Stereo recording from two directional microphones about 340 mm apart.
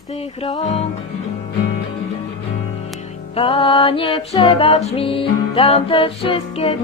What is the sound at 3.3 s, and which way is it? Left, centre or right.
Music, centre.